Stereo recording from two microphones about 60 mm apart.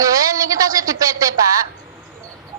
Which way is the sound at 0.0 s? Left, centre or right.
Right.